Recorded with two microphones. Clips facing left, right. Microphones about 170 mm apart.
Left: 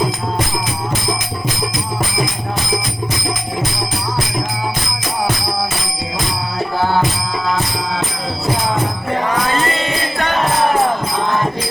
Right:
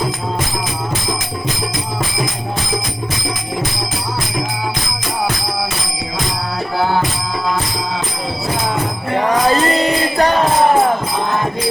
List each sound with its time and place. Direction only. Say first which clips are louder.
9.1 s music: right 5 dB; 35° right (ahead or behind)